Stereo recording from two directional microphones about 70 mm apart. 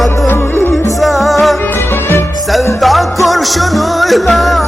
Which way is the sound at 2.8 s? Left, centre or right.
Centre.